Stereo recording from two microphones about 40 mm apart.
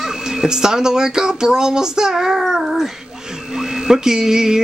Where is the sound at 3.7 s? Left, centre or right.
Centre.